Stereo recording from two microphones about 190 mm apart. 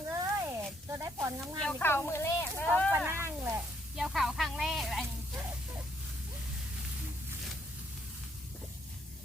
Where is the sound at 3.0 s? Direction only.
10° right (ahead or behind).